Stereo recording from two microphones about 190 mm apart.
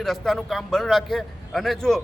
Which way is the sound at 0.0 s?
Centre (ahead or behind).